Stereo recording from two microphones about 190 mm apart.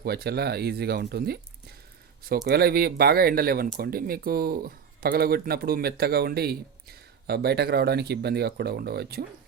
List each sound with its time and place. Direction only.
0.0 s speech: 55° right (ahead or behind)
2.5 s speech: 55° right (ahead or behind)